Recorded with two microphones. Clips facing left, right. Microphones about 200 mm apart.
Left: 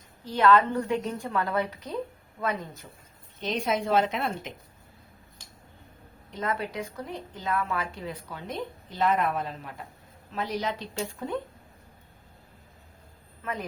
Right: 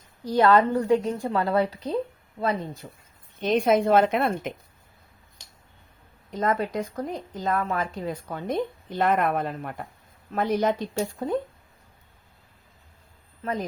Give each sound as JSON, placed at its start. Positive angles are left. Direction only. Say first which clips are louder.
{"t": 0.3, "sound": "a woman's voice", "louder": "right 3 dB", "side_deg": -40}
{"t": 2.4, "sound": "speech", "louder": "right 4 dB", "side_deg": -20}
{"t": 2.8, "sound": "a woman's voice", "louder": "right 5 dB", "side_deg": -40}
{"t": 3.4, "sound": "a woman's voice", "louder": "right 7 dB", "side_deg": -55}
{"t": 6.3, "sound": "a woman's voice", "louder": "right 6 dB", "side_deg": -45}
{"t": 13.4, "sound": "a woman's voice", "louder": "right 5 dB", "side_deg": -35}